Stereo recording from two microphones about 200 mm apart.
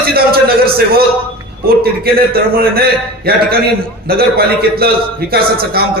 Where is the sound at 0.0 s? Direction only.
50° right (ahead or behind).